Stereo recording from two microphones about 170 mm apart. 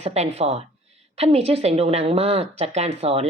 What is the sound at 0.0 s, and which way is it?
A woman's voice, 40° right (ahead or behind).